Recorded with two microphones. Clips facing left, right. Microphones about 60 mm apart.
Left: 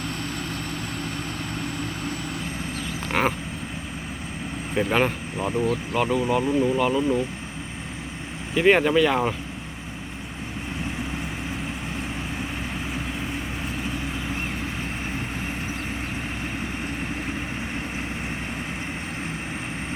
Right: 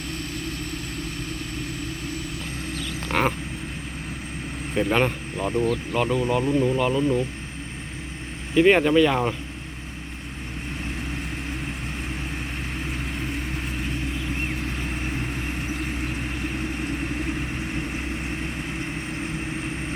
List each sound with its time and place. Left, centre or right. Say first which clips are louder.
3.1 s vehicle: even; centre
4.7 s speech: even; centre
8.5 s speech: right 1 dB; centre
12.9 s vehicle: even; centre
14.8 s vehicle: right 1 dB; centre